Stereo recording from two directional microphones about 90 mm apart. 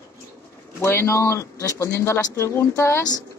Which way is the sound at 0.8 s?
30° left (ahead or behind).